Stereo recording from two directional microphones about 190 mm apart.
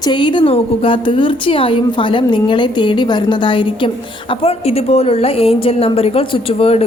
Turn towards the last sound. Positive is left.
turn(degrees=30)  # may be behind; listen again after turning